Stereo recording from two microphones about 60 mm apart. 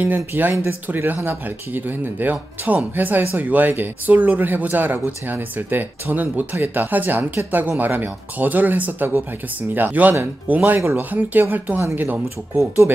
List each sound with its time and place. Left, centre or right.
0.0 s speech: right